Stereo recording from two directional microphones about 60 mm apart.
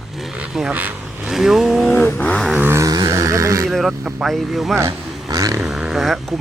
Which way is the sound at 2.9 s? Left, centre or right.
Right.